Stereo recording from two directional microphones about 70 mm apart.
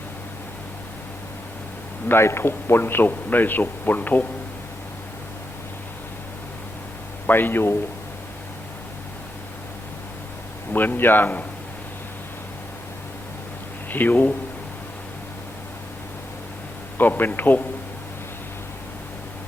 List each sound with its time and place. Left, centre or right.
2.0 s a man's voice: left
7.3 s a man's voice: left
10.7 s a man's voice: left
13.9 s a man's voice: left
17.0 s a man's voice: left